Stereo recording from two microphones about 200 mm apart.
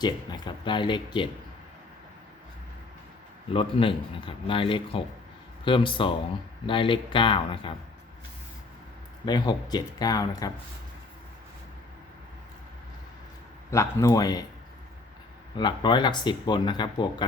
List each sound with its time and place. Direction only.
0.0 s speech: 20° left (ahead or behind)
3.5 s speech: 25° left (ahead or behind)
9.2 s speech: 20° left (ahead or behind)
13.7 s speech: 15° left (ahead or behind)
15.5 s speech: 20° left (ahead or behind)